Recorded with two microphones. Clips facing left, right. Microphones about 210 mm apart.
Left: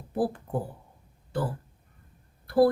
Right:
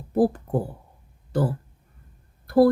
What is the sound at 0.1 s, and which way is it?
Speech, 40° right (ahead or behind).